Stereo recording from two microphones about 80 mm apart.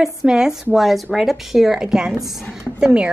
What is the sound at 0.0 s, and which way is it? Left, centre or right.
A woman's voice, centre.